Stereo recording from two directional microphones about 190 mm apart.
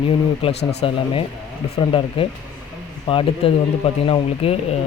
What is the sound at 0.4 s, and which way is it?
Speech, 30° left (ahead or behind).